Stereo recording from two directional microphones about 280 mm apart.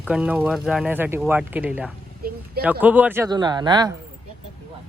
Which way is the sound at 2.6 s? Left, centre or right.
Centre.